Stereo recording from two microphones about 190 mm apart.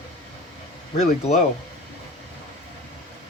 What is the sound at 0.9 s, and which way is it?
Speech, 35° left (ahead or behind).